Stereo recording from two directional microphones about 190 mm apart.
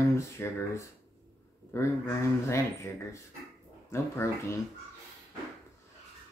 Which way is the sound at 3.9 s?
15° left (ahead or behind).